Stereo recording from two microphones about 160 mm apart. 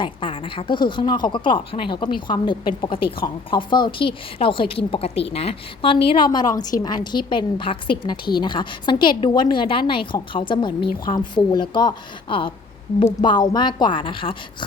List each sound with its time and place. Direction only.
0.0 s a woman's voice: 35° left (ahead or behind)